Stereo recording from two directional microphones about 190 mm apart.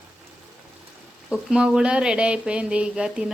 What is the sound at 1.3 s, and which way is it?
Speech, 5° right (ahead or behind).